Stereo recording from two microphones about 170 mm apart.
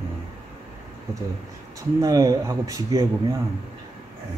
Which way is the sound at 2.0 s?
20° right (ahead or behind).